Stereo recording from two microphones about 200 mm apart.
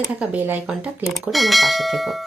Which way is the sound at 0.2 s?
10° right (ahead or behind).